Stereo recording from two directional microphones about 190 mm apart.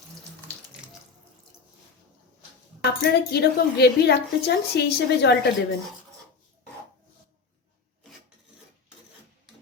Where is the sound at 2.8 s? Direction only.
60° left (ahead or behind).